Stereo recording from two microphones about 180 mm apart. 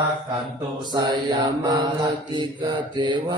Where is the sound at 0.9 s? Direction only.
25° right (ahead or behind).